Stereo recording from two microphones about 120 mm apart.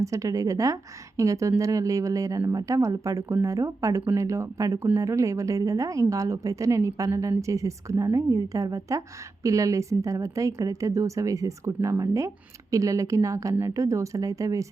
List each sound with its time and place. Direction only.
0.0 s a woman's voice: 25° right (ahead or behind)